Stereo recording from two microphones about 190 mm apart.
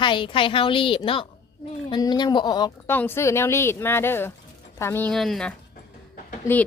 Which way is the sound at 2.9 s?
10° left (ahead or behind).